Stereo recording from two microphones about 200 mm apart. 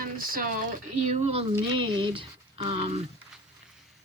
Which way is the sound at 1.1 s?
30° right (ahead or behind).